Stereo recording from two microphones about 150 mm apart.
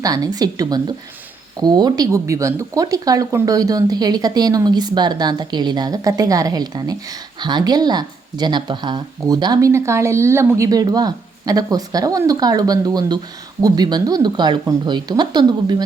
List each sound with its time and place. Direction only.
0.0 s speech: 25° right (ahead or behind)